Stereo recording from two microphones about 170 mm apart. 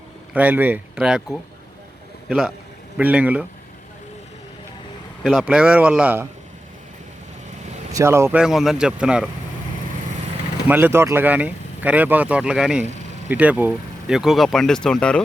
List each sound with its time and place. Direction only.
0.3 s speech: 10° right (ahead or behind)
3.0 s speech: 10° right (ahead or behind)
5.2 s speech: centre (ahead or behind)
7.9 s speech: 15° right (ahead or behind)
8.4 s speech: centre (ahead or behind)
10.7 s speech: 10° right (ahead or behind); by 15.2 s 5° left (ahead or behind)